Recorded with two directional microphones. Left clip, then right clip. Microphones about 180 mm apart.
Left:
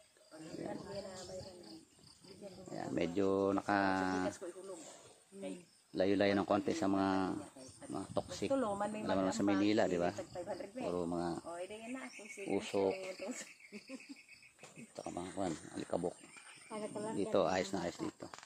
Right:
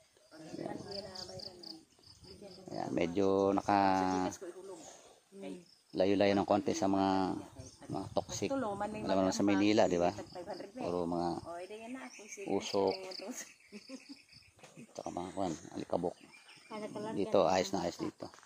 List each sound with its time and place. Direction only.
2.7 s speech: 30° right (ahead or behind)
5.9 s speech: 30° right (ahead or behind)
8.5 s a woman's voice: 5° right (ahead or behind)
9.1 s speech: 35° right (ahead or behind)
10.3 s speech: 10° right (ahead or behind)
10.9 s speech: 25° right (ahead or behind)
11.5 s speech: 15° right (ahead or behind)
12.4 s speech: 25° right (ahead or behind)
15.0 s speech: 25° right (ahead or behind)